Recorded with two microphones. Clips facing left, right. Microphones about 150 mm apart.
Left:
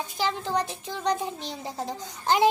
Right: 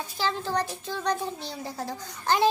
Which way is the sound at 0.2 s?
15° left (ahead or behind).